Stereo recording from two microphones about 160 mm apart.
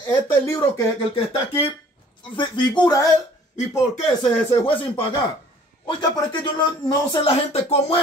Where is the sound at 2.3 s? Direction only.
30° left (ahead or behind).